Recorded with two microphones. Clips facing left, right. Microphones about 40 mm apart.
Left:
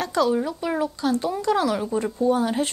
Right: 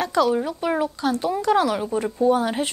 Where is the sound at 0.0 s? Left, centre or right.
Centre.